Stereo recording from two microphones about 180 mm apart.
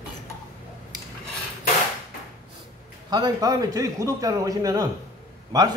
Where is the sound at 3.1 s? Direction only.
20° right (ahead or behind).